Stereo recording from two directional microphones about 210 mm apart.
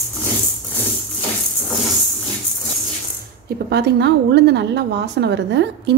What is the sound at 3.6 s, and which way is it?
A woman's voice, 50° right (ahead or behind).